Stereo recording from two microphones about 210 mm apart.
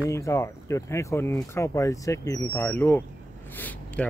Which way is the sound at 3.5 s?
10° left (ahead or behind).